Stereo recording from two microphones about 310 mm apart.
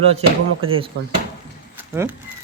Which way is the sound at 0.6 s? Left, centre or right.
Centre.